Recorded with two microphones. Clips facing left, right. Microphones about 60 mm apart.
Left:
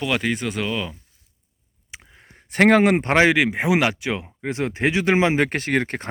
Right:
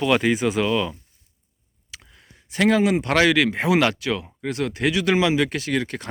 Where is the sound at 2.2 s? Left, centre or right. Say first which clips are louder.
Left 4 dB; left.